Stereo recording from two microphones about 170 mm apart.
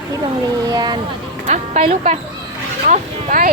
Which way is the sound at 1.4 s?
40° right (ahead or behind).